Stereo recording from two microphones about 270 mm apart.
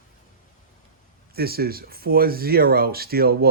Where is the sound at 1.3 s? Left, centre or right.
Right.